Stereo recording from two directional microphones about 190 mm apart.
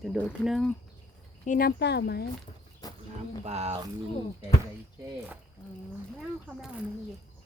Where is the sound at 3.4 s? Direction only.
35° right (ahead or behind).